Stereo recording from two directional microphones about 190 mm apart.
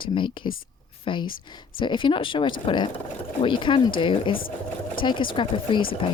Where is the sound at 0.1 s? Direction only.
25° left (ahead or behind).